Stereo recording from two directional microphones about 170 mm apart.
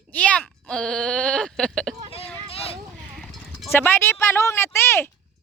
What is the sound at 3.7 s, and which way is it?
Speech, 10° left (ahead or behind).